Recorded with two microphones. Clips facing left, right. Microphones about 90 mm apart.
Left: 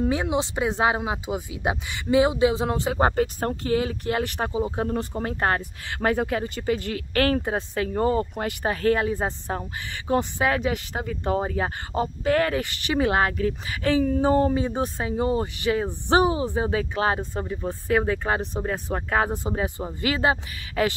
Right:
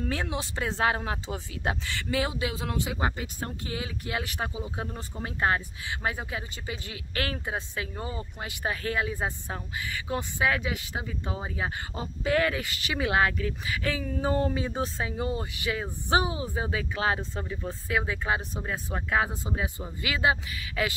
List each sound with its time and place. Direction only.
0.0 s speech: 20° left (ahead or behind); by 4.9 s 40° left (ahead or behind)
4.9 s speech: 50° left (ahead or behind)
10.9 s speech: 55° left (ahead or behind); by 17.6 s 30° left (ahead or behind)
17.8 s speech: 45° left (ahead or behind)